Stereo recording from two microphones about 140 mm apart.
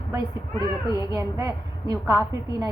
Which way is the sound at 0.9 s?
20° right (ahead or behind).